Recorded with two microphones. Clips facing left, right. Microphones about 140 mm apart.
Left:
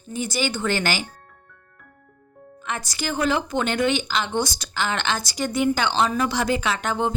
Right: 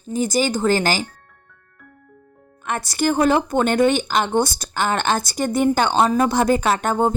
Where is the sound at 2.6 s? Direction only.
55° right (ahead or behind).